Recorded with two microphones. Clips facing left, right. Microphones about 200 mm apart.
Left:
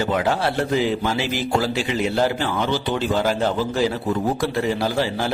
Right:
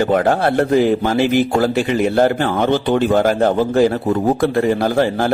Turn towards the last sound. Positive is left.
turn(degrees=-50)  # may be behind; listen again after turning